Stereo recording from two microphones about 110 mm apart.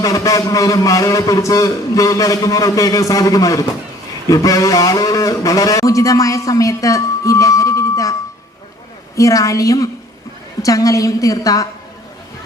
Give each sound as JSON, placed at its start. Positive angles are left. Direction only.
{"t": 0.0, "sound": "a man's voice", "side_deg": 30}
{"t": 9.1, "sound": "a woman's voice", "side_deg": 30}